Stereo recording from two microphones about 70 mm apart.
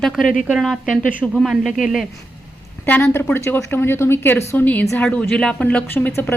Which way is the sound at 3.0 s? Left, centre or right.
Left.